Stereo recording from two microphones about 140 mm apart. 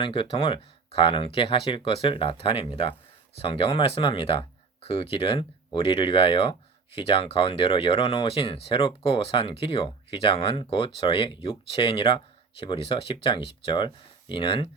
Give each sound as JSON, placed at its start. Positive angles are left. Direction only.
{"t": 0.0, "sound": "speech", "side_deg": 40}